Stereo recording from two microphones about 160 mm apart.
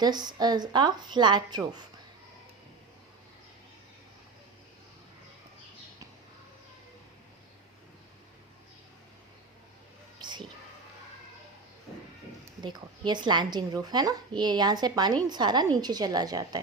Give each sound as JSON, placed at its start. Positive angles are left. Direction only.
{"t": 0.0, "sound": "a woman's voice", "side_deg": -25}
{"t": 10.2, "sound": "a sound", "side_deg": -30}
{"t": 12.6, "sound": "a woman's voice", "side_deg": -30}